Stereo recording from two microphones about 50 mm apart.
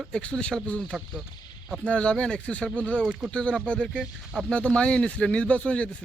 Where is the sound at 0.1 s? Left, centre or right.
Left.